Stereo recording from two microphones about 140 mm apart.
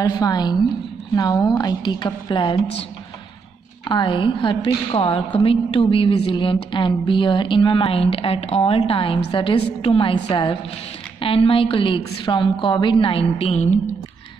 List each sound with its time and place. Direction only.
0.0 s a woman's voice: 30° left (ahead or behind); by 13.7 s 55° left (ahead or behind)